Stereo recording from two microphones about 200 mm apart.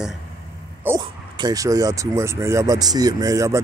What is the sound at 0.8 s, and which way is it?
Speech, 20° right (ahead or behind).